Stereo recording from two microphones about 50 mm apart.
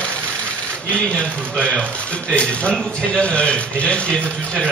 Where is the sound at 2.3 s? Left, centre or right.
Left.